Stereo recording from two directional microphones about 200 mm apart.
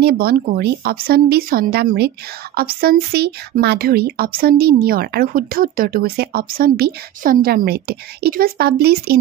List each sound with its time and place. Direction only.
0.0 s speech: 50° right (ahead or behind)